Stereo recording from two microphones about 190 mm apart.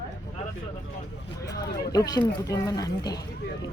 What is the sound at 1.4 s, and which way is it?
Speech, 20° left (ahead or behind).